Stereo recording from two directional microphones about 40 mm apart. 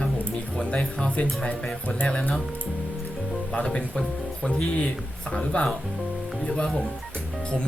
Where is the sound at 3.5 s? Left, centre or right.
Left.